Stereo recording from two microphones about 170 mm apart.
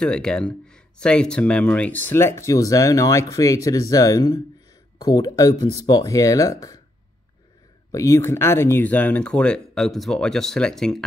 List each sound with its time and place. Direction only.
0.0 s speech: 5° left (ahead or behind)
7.9 s speech: 15° left (ahead or behind)